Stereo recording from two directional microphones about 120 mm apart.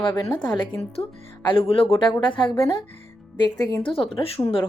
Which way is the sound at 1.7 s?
50° left (ahead or behind).